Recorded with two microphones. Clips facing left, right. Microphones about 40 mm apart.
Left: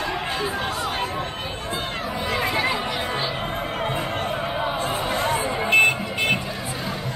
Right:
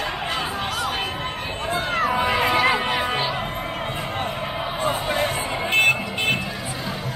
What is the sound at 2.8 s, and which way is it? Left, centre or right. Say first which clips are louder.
Music: right 4 dB; right.